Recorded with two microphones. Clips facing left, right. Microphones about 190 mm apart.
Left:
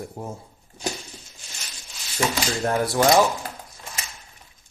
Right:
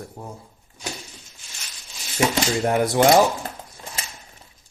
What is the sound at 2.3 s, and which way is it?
Speech, 20° right (ahead or behind).